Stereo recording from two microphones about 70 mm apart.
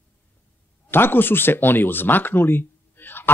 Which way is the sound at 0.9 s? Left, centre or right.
Left.